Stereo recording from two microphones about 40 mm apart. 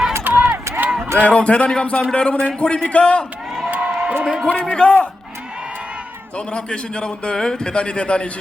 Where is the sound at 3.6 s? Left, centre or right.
Right.